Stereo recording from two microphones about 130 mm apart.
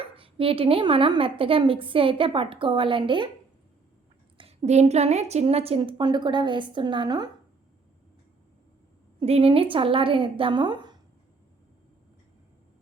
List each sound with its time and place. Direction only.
0.0 s a woman's voice: 45° right (ahead or behind)
4.4 s a woman's voice: 55° right (ahead or behind); by 7.3 s 35° right (ahead or behind)
9.2 s a woman's voice: 50° right (ahead or behind)